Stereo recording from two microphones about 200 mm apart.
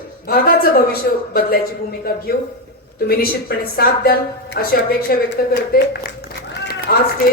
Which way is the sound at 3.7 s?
50° left (ahead or behind).